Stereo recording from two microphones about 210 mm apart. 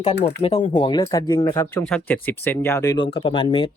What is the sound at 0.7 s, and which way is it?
Speech, 25° left (ahead or behind).